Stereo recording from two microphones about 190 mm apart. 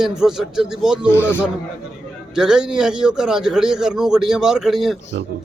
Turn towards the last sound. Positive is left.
turn(degrees=0)  # may be behind; listen again after turning